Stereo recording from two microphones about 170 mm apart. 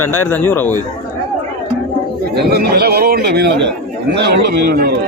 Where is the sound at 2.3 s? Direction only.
70° right (ahead or behind).